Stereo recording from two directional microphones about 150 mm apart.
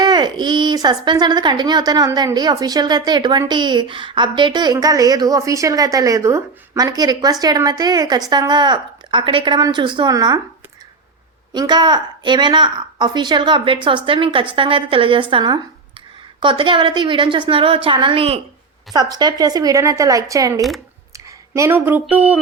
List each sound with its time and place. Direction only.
0.0 s speech: 30° right (ahead or behind)
11.5 s a woman's voice: 30° right (ahead or behind)
18.9 s speech: 25° right (ahead or behind)
20.6 s speech: centre (ahead or behind)
21.5 s speech: 15° right (ahead or behind)